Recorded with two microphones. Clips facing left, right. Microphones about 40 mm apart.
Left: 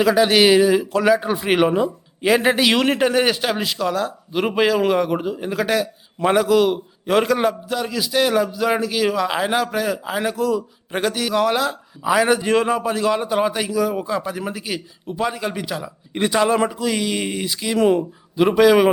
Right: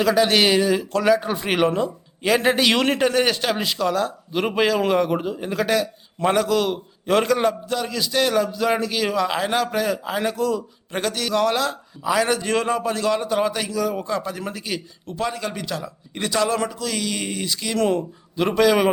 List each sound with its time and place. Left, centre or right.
0.0 s speech: centre
16.1 s speech: left